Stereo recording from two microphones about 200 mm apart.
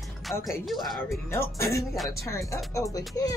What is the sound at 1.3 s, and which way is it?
Speech, 15° left (ahead or behind).